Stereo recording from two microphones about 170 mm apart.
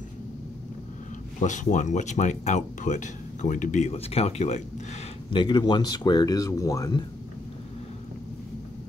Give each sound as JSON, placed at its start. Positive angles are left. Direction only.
{"t": 1.4, "sound": "speech", "side_deg": 45}
{"t": 5.3, "sound": "speech", "side_deg": 25}